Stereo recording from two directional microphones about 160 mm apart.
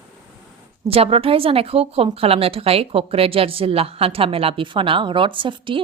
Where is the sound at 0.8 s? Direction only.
35° right (ahead or behind).